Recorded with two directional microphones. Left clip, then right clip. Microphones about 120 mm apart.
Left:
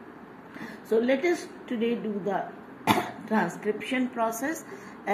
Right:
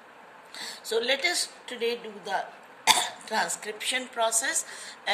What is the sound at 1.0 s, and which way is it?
Speech, 15° left (ahead or behind).